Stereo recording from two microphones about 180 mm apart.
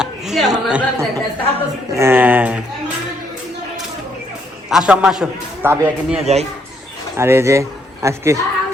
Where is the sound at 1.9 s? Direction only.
15° right (ahead or behind).